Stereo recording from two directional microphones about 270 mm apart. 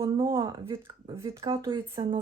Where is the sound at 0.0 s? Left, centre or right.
Centre.